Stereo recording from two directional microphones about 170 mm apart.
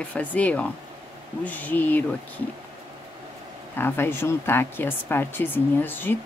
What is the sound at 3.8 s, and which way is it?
Speech, 15° left (ahead or behind).